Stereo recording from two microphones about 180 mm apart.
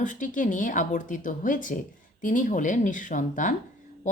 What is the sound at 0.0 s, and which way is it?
Speech, 45° left (ahead or behind).